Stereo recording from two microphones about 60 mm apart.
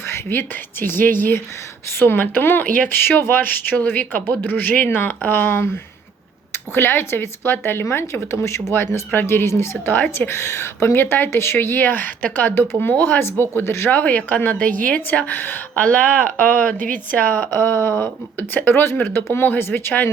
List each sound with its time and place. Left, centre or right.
0.1 s speech: left
6.7 s speech: left
14.0 s a woman's voice: left
15.3 s speech: left